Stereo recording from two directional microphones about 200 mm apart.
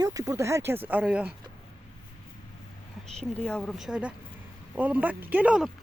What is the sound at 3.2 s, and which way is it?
Speech, 5° left (ahead or behind).